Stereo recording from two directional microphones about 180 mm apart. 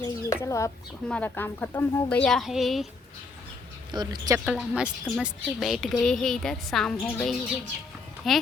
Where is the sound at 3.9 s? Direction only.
25° right (ahead or behind).